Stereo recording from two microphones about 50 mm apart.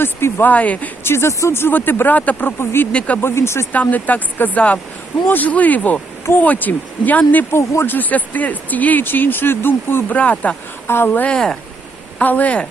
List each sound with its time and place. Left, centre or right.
0.0 s speech: left
0.4 s speech: left
1.0 s speech: left
1.5 s speech: left
3.2 s speech: left
3.7 s speech: left
7.5 s speech: left
7.9 s speech: left
10.1 s speech: left
10.8 s a woman's voice: left
11.3 s speech: centre
12.2 s speech: left